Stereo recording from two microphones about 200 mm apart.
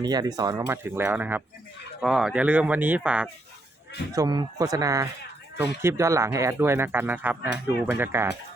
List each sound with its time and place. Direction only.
0.0 s speech: 20° right (ahead or behind)
4.1 s speech: 20° right (ahead or behind)